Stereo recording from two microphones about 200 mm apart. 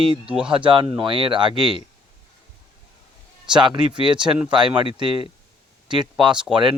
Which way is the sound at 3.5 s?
20° right (ahead or behind).